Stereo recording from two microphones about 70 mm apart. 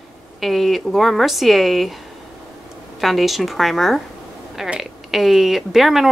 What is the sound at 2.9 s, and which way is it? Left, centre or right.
Speech, centre.